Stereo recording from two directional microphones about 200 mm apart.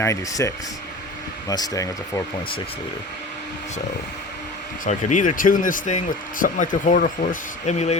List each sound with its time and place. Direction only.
0.0 s speech: 15° left (ahead or behind)
4.9 s speech: 35° left (ahead or behind)